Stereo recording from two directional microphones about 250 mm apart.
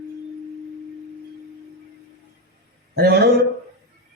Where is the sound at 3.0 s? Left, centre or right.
Right.